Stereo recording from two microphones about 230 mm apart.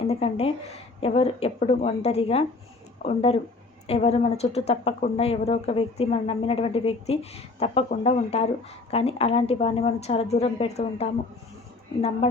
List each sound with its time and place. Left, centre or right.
0.1 s speech: left
12.2 s a woman's voice: left